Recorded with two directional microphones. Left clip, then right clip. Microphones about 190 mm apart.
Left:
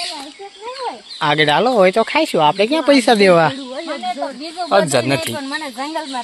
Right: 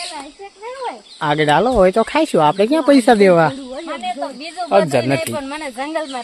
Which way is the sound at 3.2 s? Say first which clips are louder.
Even; 10° right (ahead or behind).